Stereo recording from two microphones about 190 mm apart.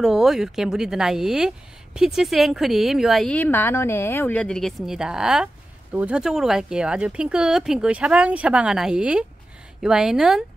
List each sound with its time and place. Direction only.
0.0 s speech: centre (ahead or behind)